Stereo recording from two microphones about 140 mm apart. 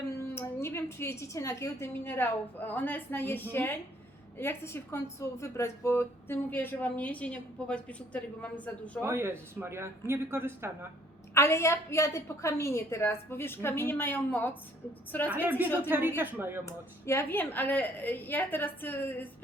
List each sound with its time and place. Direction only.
0.1 s a woman's voice: 20° left (ahead or behind)
9.0 s speech: 15° right (ahead or behind)
11.3 s speech: 20° left (ahead or behind)
15.4 s speech: 10° right (ahead or behind)
16.6 s speech: 20° left (ahead or behind)